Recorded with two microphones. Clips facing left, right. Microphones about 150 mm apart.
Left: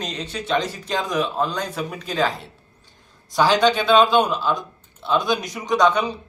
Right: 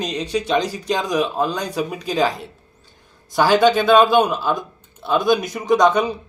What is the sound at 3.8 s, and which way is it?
Speech, 10° right (ahead or behind).